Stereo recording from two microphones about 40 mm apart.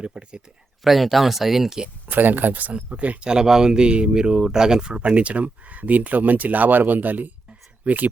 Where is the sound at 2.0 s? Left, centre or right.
Right.